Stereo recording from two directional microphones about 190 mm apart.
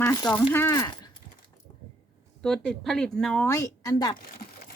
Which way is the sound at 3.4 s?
20° left (ahead or behind).